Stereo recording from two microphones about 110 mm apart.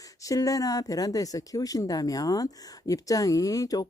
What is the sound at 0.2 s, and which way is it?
Speech, 30° left (ahead or behind).